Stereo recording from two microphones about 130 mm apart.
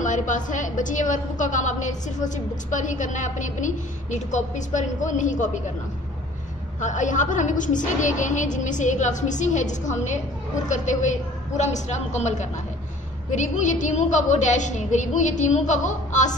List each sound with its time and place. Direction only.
0.0 s a woman's voice: 75° left (ahead or behind)
6.8 s a woman's voice: 75° left (ahead or behind)